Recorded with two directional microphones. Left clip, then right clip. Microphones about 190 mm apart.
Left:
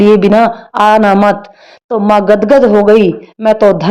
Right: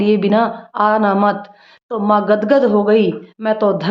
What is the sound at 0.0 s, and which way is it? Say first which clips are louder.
Speech: left 8 dB; 35° left (ahead or behind).